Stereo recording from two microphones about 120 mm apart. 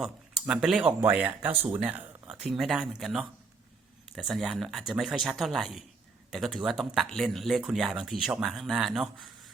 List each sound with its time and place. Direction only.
0.0 s speech: 5° right (ahead or behind)